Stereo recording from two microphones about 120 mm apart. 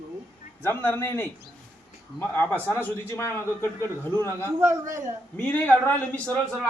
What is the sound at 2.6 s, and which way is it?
A man's voice, 20° left (ahead or behind).